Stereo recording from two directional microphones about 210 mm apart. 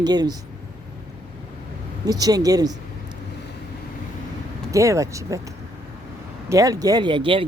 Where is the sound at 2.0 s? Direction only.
15° right (ahead or behind).